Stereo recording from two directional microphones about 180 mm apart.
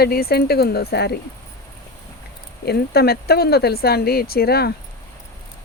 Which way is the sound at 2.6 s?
60° left (ahead or behind).